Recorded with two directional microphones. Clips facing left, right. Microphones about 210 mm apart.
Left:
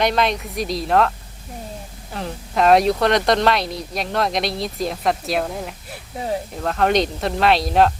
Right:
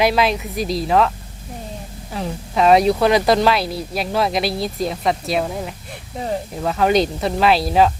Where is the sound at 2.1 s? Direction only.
Centre (ahead or behind).